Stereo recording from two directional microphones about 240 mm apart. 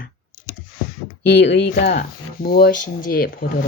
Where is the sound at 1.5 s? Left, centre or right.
Left.